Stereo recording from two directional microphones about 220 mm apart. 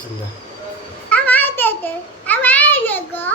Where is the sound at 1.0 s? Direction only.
5° left (ahead or behind).